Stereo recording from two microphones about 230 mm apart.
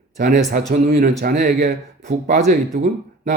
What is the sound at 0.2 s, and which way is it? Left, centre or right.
A man's voice, right.